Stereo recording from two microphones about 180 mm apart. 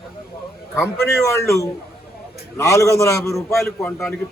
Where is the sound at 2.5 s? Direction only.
15° left (ahead or behind).